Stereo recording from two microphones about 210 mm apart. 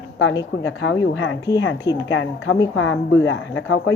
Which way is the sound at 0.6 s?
70° left (ahead or behind).